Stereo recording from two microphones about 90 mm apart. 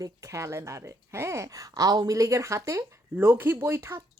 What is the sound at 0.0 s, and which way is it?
Speech, 35° right (ahead or behind).